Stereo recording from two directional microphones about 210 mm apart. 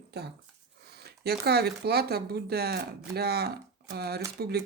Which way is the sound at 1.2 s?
50° right (ahead or behind).